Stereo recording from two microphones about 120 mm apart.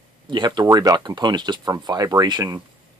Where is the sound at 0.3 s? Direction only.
35° right (ahead or behind).